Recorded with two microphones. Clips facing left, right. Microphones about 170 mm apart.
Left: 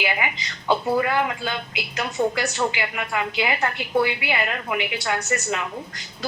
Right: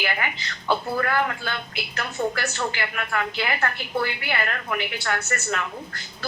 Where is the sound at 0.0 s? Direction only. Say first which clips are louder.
Left 2 dB; 15° left (ahead or behind).